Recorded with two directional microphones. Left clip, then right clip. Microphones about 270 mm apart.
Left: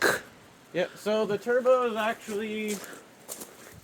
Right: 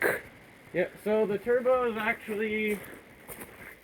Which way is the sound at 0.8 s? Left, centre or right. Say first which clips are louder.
Even; centre.